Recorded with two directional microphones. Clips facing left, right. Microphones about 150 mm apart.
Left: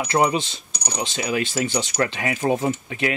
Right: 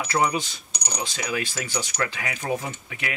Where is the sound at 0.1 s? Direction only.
25° left (ahead or behind).